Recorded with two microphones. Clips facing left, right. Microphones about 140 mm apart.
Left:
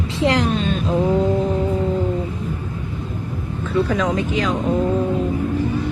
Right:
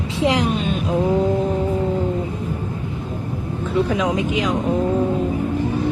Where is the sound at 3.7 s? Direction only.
15° right (ahead or behind).